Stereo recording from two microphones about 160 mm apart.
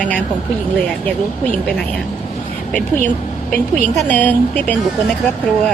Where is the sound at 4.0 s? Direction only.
10° left (ahead or behind).